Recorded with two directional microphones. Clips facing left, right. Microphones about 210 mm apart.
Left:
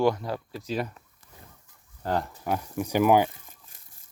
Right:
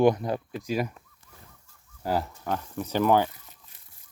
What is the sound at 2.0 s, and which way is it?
Speech, 5° right (ahead or behind).